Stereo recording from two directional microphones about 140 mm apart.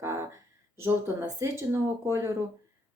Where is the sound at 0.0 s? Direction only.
20° right (ahead or behind).